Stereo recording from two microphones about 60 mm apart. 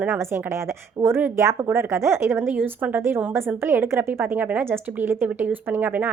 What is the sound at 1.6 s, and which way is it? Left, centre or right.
Speech, right.